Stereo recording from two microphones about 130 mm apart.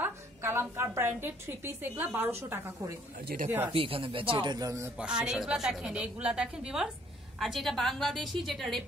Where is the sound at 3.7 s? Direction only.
45° right (ahead or behind); by 4.9 s 25° right (ahead or behind).